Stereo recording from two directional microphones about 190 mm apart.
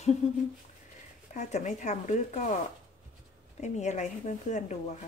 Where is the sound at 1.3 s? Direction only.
40° left (ahead or behind).